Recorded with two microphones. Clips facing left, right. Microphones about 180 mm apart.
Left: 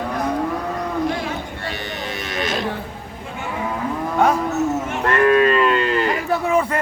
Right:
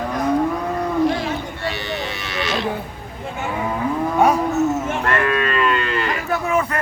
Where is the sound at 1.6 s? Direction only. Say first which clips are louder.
Right 3 dB; 50° left (ahead or behind).